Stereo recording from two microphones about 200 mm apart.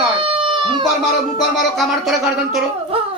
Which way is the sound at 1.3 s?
Centre (ahead or behind).